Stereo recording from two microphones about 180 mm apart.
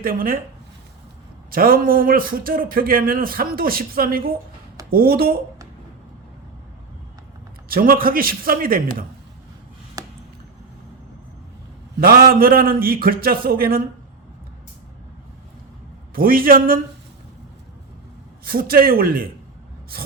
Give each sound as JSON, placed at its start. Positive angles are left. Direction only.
{"t": 0.0, "sound": "a man's voice", "side_deg": -55}
{"t": 1.5, "sound": "a man's voice", "side_deg": -55}
{"t": 7.7, "sound": "a man's voice", "side_deg": -55}
{"t": 10.0, "sound": "a sound", "side_deg": -20}
{"t": 11.9, "sound": "a man's voice", "side_deg": -55}
{"t": 16.1, "sound": "a man's voice", "side_deg": -55}
{"t": 18.4, "sound": "a man's voice", "side_deg": -55}